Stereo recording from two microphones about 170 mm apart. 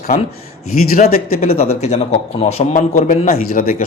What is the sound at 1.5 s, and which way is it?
A man's voice, 35° left (ahead or behind).